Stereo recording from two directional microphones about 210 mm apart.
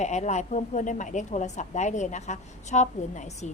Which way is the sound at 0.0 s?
35° left (ahead or behind).